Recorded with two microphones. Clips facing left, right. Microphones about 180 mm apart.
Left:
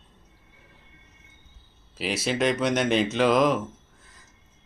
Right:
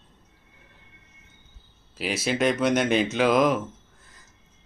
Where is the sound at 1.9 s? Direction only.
Centre (ahead or behind).